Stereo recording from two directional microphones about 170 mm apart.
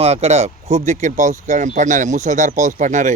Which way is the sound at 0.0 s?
40° right (ahead or behind).